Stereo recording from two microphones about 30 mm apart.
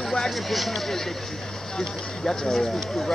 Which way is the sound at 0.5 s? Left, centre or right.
Centre.